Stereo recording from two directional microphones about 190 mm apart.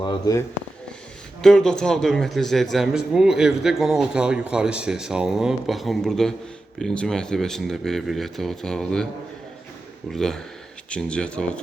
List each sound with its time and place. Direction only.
0.0 s speech: 20° left (ahead or behind)
1.4 s a man's voice: 5° left (ahead or behind)
10.1 s a man's voice: centre (ahead or behind)